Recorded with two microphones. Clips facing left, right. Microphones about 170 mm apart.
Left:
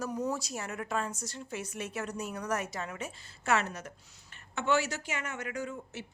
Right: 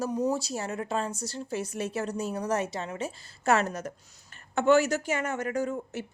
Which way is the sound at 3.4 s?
40° right (ahead or behind).